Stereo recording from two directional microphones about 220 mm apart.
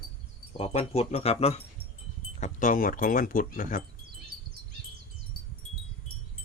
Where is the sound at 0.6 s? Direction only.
25° left (ahead or behind).